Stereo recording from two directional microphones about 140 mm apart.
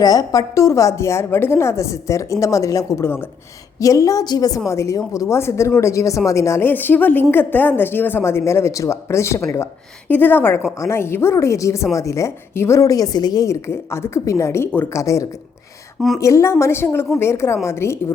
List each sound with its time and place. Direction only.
0.0 s a woman's voice: 25° left (ahead or behind)